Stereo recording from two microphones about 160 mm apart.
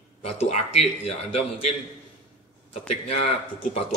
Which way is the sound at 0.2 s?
45° left (ahead or behind).